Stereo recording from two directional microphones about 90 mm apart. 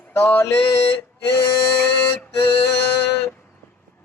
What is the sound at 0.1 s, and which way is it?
Speech, 25° left (ahead or behind).